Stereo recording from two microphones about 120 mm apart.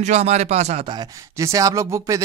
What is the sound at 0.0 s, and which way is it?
Speech, 70° right (ahead or behind).